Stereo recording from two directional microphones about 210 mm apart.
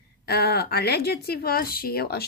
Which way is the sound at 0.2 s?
50° left (ahead or behind).